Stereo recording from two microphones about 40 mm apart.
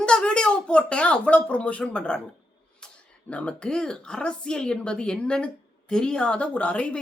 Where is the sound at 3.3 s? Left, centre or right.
Left.